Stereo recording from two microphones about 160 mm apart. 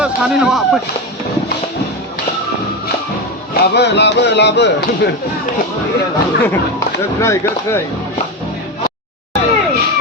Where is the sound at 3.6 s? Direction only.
90° left.